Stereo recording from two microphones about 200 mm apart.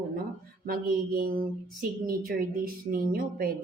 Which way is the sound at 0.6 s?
45° right (ahead or behind).